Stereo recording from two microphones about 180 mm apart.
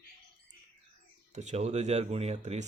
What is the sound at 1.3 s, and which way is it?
Speech, 40° right (ahead or behind).